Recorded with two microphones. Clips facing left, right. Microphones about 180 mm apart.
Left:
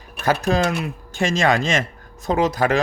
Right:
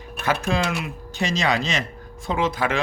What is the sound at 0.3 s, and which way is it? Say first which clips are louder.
A man's voice: left 4 dB; 40° left (ahead or behind).